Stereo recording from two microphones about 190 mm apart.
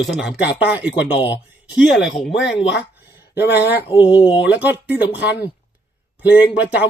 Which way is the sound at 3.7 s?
10° right (ahead or behind).